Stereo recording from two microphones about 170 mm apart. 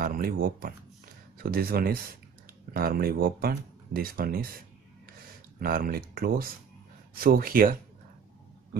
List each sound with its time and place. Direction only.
0.0 s speech: 60° right (ahead or behind)